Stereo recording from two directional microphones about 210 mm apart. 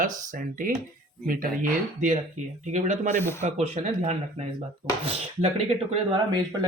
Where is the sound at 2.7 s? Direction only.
35° right (ahead or behind).